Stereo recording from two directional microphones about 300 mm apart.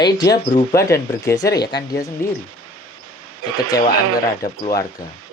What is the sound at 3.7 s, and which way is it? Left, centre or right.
Speech, centre.